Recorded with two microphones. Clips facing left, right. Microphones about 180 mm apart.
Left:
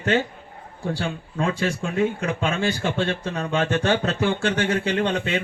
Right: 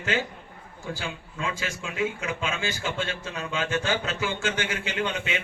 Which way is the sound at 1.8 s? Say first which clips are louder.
Left 3 dB; 50° left (ahead or behind).